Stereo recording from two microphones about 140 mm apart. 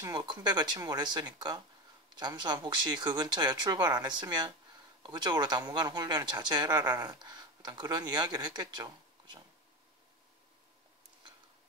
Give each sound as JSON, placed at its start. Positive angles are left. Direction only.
{"t": 0.0, "sound": "speech", "side_deg": -30}